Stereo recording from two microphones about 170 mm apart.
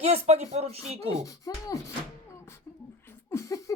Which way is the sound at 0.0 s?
40° right (ahead or behind).